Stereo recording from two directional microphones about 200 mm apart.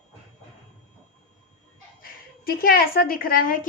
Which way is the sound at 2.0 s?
45° left (ahead or behind).